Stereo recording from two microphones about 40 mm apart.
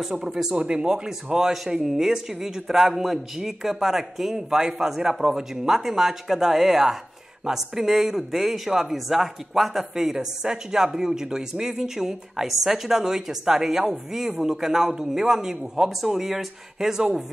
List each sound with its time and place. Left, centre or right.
0.0 s speech: centre
0.6 s speech: right